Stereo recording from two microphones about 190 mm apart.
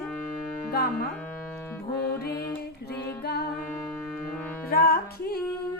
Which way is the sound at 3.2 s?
55° left (ahead or behind).